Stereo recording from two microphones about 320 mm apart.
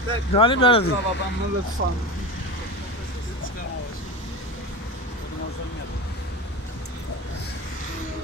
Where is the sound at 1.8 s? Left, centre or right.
Right.